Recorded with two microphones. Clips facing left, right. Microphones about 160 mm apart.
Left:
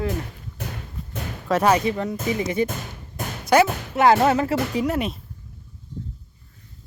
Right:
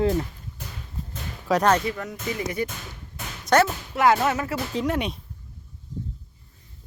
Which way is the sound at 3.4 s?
10° left (ahead or behind).